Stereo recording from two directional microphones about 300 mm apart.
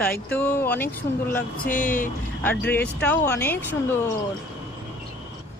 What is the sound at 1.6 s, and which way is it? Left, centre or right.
Speech, left.